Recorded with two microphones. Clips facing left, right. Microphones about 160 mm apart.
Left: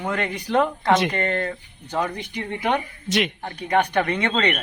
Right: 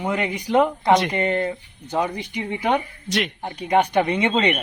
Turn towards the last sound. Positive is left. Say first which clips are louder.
# right 2 dB
turn(degrees=-15)  # may be behind; listen again after turning